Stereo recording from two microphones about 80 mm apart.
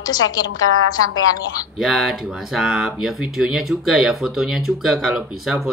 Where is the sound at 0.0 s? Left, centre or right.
Left.